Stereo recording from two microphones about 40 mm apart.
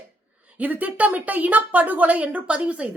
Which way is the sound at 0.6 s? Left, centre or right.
Right.